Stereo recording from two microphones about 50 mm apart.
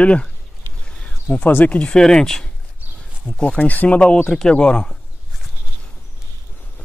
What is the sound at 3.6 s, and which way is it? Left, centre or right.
Speech, left.